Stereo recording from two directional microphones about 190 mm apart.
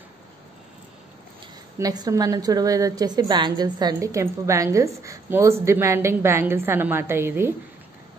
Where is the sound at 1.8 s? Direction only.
20° right (ahead or behind).